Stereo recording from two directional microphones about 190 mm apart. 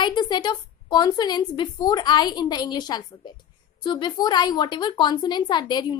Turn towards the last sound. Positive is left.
turn(degrees=25)  # may be behind; listen again after turning